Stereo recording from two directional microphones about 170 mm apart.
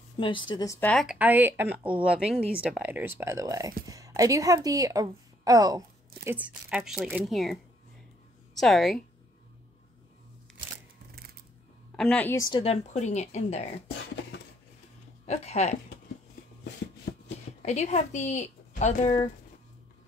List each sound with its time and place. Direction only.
0.2 s a woman's voice: 30° left (ahead or behind)
0.7 s a woman's voice: 5° left (ahead or behind)
1.0 s a woman's voice: 10° right (ahead or behind)
6.2 s speech: 10° right (ahead or behind)
8.5 s speech: centre (ahead or behind)
12.0 s a woman's voice: 5° left (ahead or behind)
12.4 s a woman's voice: 25° left (ahead or behind)
12.6 s speech: 40° left (ahead or behind)
13.8 s a sound: 70° left (ahead or behind)
15.2 s speech: 40° left (ahead or behind)
17.6 s a woman's voice: 40° left (ahead or behind)